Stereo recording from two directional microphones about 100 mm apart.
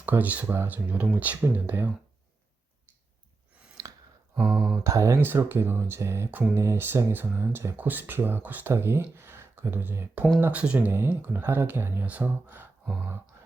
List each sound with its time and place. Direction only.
0.0 s speech: 15° right (ahead or behind)
3.8 s sigh: 35° right (ahead or behind)
4.6 s speech: 30° right (ahead or behind)
5.2 s speech: 20° right (ahead or behind)